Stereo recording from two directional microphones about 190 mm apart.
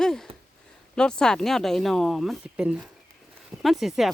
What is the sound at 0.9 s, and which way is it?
Speech, 5° left (ahead or behind).